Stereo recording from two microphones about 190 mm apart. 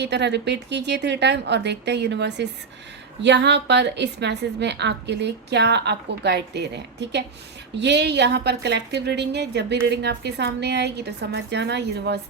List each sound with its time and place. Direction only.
0.0 s a woman's voice: 65° right (ahead or behind)